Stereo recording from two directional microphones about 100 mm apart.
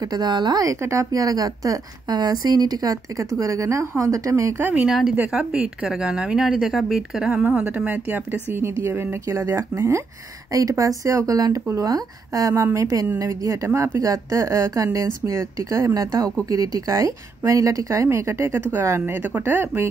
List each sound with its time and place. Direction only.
0.1 s speech: 45° right (ahead or behind)
0.7 s a woman's voice: 30° right (ahead or behind)
4.7 s a woman's voice: 5° right (ahead or behind); by 19.9 s 25° right (ahead or behind)